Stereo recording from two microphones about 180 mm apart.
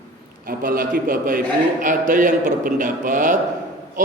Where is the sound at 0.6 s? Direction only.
50° right (ahead or behind).